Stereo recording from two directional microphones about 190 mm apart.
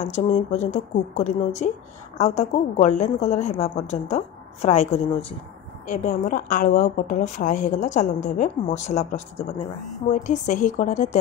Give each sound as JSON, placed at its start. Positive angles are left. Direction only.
{"t": 0.0, "sound": "a woman's voice", "side_deg": 40}